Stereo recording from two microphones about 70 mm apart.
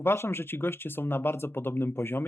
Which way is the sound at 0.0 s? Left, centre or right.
Left.